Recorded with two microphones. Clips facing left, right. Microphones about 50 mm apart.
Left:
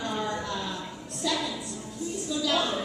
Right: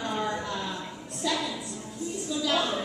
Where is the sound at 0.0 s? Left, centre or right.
Centre.